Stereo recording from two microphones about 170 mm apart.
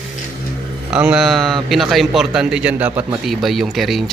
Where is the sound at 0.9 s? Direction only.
5° right (ahead or behind).